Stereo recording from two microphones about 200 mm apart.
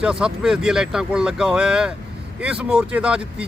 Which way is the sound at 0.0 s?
5° right (ahead or behind).